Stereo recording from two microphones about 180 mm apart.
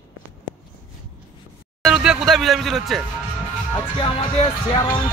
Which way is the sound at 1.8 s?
5° right (ahead or behind).